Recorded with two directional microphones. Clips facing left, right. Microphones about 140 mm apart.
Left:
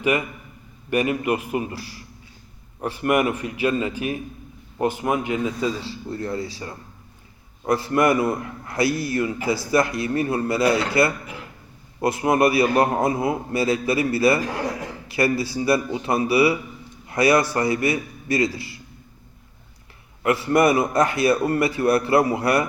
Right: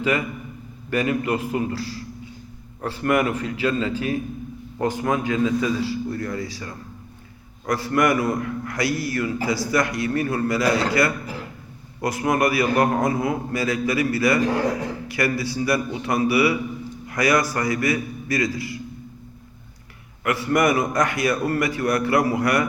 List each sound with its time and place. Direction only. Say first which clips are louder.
0.9 s a man's voice: left 1 dB; 15° left (ahead or behind)
11.9 s a man's voice: left 2 dB; 25° left (ahead or behind)
20.2 s a man's voice: left 2 dB; 25° left (ahead or behind)